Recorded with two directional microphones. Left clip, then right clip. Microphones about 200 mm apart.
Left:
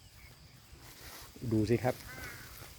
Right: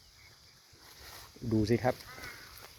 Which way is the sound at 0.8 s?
5° left (ahead or behind).